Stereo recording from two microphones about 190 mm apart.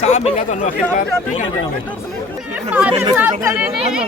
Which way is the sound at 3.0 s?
15° right (ahead or behind).